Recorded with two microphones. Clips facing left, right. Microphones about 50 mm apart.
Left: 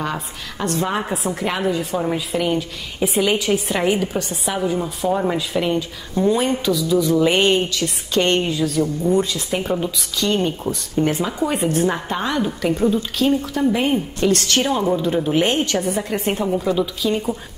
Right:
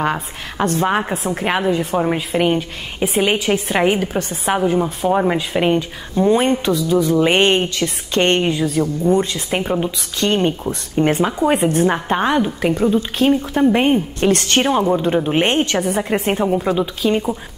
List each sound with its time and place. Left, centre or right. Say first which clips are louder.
0.0 s a woman's voice: right 5 dB; right
5.3 s a woman's voice: right 3 dB; right